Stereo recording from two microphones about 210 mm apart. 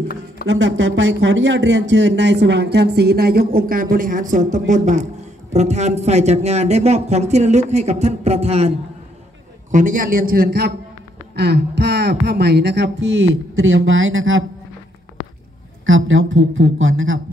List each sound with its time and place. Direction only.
0.5 s speech: 65° right (ahead or behind); by 10.7 s 45° right (ahead or behind)
11.3 s a sound: 50° right (ahead or behind); by 14.4 s 70° right (ahead or behind)
15.8 s a man's voice: 70° right (ahead or behind)